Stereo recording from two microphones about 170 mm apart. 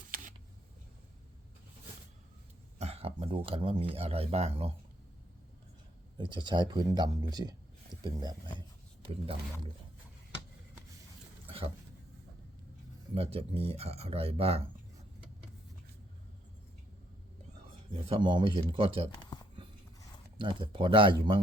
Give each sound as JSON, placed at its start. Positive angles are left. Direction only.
{"t": 0.1, "sound": "a sound", "side_deg": -50}
{"t": 2.7, "sound": "speech", "side_deg": -35}
{"t": 6.1, "sound": "speech", "side_deg": -30}
{"t": 11.4, "sound": "a sound", "side_deg": -35}
{"t": 13.1, "sound": "speech", "side_deg": -35}
{"t": 18.1, "sound": "speech", "side_deg": -25}
{"t": 20.4, "sound": "speech", "side_deg": -30}